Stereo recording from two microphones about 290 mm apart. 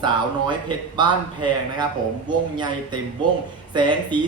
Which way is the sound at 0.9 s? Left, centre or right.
Centre.